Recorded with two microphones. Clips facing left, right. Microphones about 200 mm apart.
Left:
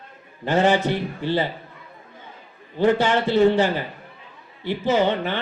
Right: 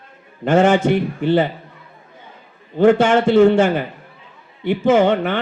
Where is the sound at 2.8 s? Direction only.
50° right (ahead or behind).